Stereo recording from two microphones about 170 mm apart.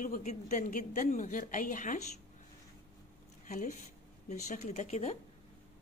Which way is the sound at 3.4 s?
45° left (ahead or behind).